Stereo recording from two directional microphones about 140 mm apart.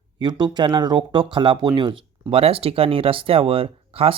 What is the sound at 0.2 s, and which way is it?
Speech, 35° right (ahead or behind).